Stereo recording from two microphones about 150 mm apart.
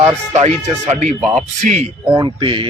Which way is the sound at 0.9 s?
55° right (ahead or behind).